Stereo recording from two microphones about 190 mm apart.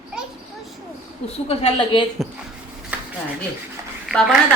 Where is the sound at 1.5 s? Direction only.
30° left (ahead or behind).